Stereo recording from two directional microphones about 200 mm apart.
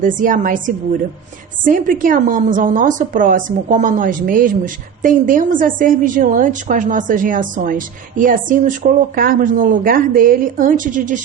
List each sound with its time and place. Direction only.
0.0 s a woman's voice: 40° right (ahead or behind)